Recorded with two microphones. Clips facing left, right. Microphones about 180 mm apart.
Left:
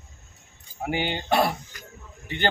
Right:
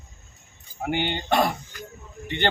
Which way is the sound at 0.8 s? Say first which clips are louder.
Right 1 dB; 5° left (ahead or behind).